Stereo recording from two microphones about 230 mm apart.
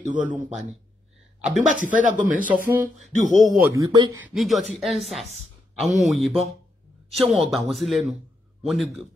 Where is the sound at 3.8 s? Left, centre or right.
Centre.